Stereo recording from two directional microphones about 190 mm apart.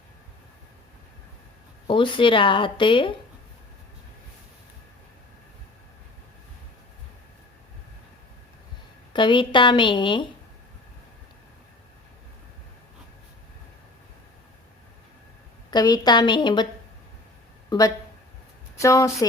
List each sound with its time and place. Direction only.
1.9 s speech: 25° left (ahead or behind)
9.1 s speech: 25° left (ahead or behind)
15.7 s speech: 20° left (ahead or behind)
17.7 s a woman's voice: 20° left (ahead or behind)